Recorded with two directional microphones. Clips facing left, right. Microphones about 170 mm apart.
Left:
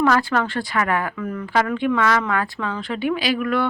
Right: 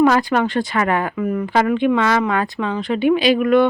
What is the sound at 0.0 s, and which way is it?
Speech, 15° right (ahead or behind).